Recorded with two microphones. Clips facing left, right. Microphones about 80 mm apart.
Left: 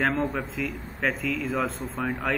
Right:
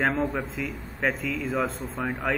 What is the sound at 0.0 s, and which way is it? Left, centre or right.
A man's voice, centre.